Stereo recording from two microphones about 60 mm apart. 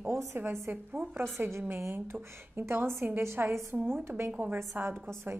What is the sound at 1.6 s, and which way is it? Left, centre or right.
A woman's voice, right.